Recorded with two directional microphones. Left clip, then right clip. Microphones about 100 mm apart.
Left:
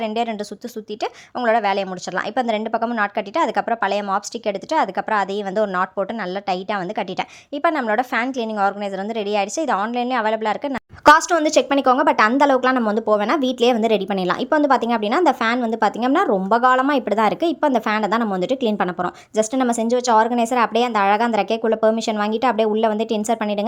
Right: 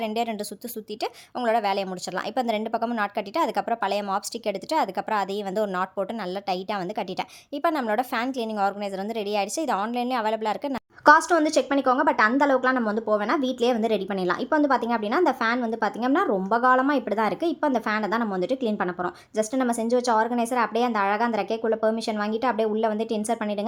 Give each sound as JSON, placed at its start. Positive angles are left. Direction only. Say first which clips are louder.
{"t": 0.0, "sound": "speech", "louder": "left 5 dB", "side_deg": 5}
{"t": 11.0, "sound": "a woman's voice", "louder": "left 4 dB", "side_deg": 45}